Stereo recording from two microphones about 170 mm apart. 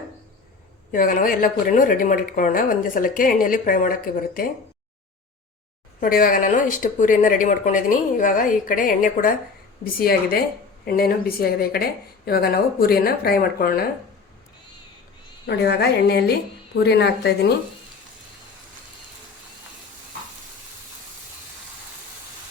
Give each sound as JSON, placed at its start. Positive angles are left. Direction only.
{"t": 0.9, "sound": "speech", "side_deg": 55}
{"t": 6.0, "sound": "speech", "side_deg": 55}
{"t": 15.4, "sound": "a woman's voice", "side_deg": 75}